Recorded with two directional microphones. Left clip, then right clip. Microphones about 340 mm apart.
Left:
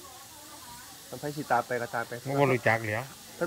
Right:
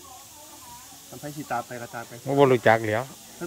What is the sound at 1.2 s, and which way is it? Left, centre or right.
Speech, centre.